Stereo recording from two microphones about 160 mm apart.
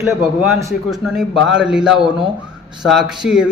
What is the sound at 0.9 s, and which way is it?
A man's voice, centre (ahead or behind).